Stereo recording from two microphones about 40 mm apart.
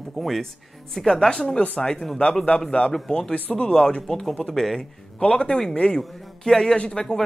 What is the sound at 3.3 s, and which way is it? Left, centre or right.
Speech, left.